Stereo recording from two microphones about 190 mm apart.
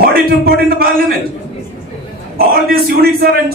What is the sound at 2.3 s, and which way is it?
A man's voice, 50° right (ahead or behind).